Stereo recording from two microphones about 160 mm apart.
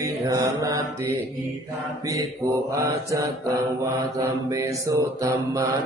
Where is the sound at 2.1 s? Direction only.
20° right (ahead or behind).